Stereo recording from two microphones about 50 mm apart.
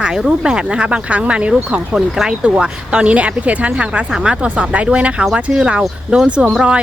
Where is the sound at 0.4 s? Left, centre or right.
Centre.